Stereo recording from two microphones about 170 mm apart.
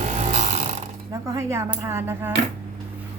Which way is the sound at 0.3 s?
40° right (ahead or behind).